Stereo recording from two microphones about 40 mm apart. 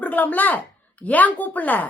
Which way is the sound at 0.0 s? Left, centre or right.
Left.